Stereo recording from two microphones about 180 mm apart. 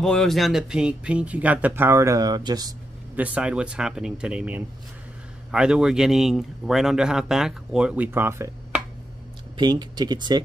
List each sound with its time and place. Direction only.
0.0 s speech: centre (ahead or behind); by 2.7 s 20° right (ahead or behind)
3.2 s a man's voice: 5° right (ahead or behind)
9.6 s speech: 25° right (ahead or behind)